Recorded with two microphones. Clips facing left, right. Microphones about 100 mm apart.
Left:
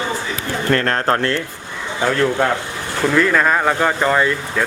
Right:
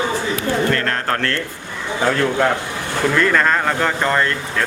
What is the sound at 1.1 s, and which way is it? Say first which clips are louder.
Speech: left 3 dB; 20° left (ahead or behind).